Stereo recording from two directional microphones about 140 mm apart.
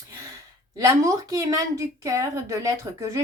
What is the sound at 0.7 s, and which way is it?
A woman's voice, 25° right (ahead or behind).